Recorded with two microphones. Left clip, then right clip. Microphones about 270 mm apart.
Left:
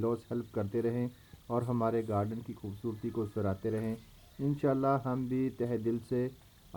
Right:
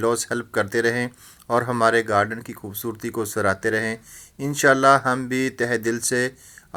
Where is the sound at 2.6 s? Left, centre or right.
Right.